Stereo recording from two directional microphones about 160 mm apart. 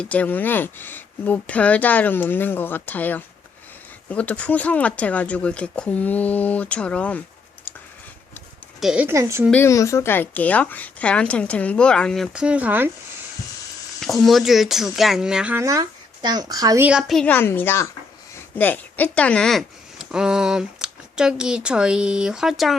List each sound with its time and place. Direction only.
0.0 s speech: 10° left (ahead or behind)
8.8 s speech: 5° right (ahead or behind)
9.1 s speech: 15° right (ahead or behind)
9.5 s speech: 15° left (ahead or behind); by 12.9 s 10° right (ahead or behind)
14.0 s speech: centre (ahead or behind)
15.6 s speech: 25° right (ahead or behind)
16.8 s speech: 5° right (ahead or behind)
17.2 s speech: 10° left (ahead or behind)